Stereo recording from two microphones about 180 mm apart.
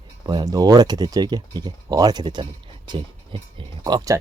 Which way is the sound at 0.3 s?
20° right (ahead or behind).